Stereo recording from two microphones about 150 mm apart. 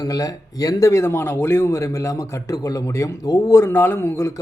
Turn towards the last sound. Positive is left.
turn(degrees=20)  # may be behind; listen again after turning